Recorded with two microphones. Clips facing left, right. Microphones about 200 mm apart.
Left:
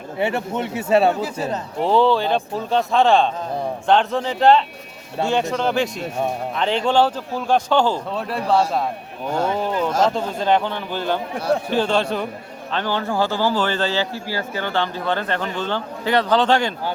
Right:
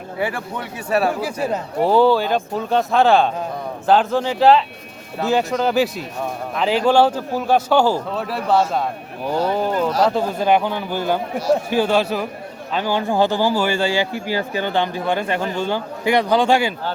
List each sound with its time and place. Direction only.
0.2 s speech: 25° left (ahead or behind)
1.2 s a man's voice: 10° right (ahead or behind)